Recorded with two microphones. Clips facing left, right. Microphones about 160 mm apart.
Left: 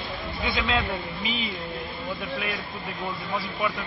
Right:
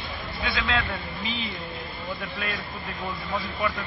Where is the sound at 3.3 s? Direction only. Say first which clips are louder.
Even; 10° left (ahead or behind).